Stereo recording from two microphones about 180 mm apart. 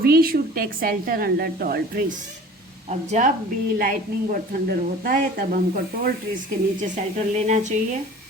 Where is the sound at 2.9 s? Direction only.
40° right (ahead or behind).